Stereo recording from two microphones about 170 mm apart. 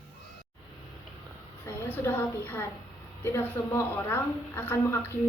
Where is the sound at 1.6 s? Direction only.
15° left (ahead or behind).